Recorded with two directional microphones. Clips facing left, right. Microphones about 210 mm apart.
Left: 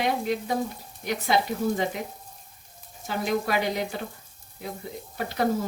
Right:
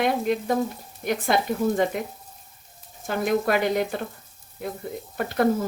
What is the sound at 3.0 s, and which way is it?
Speech, 50° right (ahead or behind).